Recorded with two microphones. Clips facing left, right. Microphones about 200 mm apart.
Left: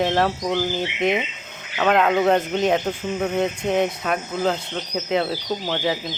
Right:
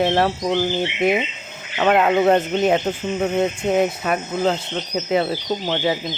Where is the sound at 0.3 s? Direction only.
25° right (ahead or behind).